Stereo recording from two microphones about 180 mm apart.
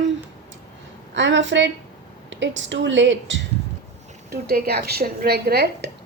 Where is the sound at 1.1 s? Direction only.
90° right.